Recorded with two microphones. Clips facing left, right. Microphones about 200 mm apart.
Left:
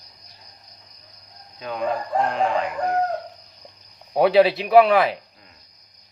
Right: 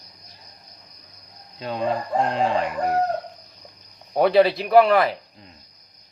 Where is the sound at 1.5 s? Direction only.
30° right (ahead or behind).